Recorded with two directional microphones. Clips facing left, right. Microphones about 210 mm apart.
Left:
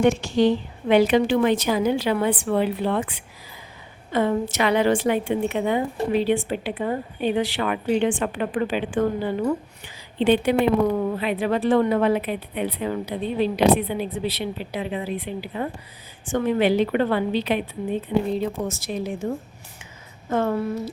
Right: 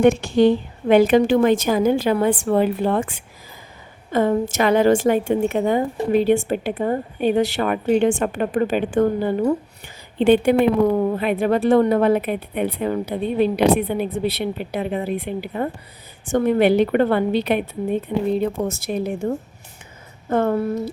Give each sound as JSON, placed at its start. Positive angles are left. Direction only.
{"t": 0.0, "sound": "a woman's voice", "side_deg": -55}
{"t": 16.6, "sound": "a woman's voice", "side_deg": -60}
{"t": 20.3, "sound": "a woman's voice", "side_deg": -50}